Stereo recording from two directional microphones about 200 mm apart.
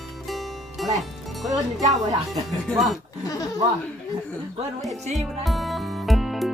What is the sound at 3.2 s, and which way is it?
Speech, 15° left (ahead or behind).